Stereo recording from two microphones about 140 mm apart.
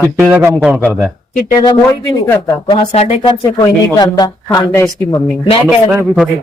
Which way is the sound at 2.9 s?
50° left (ahead or behind).